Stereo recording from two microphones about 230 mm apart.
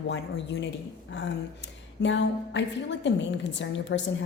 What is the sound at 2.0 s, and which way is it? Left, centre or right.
A woman's voice, left.